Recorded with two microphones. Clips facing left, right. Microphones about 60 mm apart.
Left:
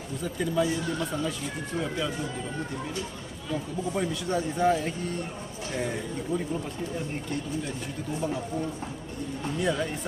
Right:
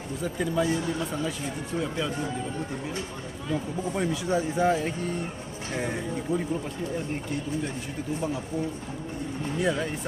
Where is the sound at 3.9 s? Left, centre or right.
Centre.